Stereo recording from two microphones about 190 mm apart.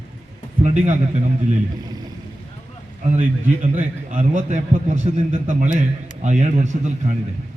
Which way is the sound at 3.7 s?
45° right (ahead or behind).